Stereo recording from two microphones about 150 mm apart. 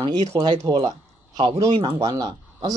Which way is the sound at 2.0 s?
25° right (ahead or behind).